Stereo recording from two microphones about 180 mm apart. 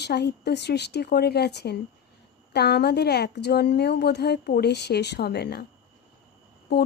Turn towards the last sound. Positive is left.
turn(degrees=65)  # may be behind; listen again after turning